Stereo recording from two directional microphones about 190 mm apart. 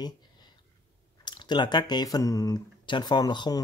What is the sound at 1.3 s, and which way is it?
Speech, 25° left (ahead or behind).